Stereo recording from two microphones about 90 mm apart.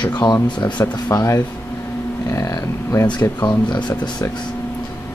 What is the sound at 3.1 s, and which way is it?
Speech, 50° left (ahead or behind).